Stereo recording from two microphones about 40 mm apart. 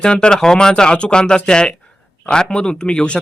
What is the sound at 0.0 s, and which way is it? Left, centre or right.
Speech, left.